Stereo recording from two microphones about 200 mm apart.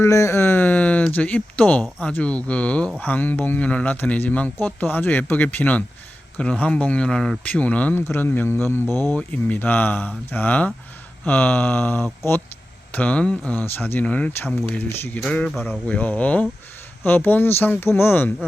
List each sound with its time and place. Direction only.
0.0 s speech: 15° left (ahead or behind)
8.9 s speech: 20° right (ahead or behind)
9.1 s speech: 10° left (ahead or behind)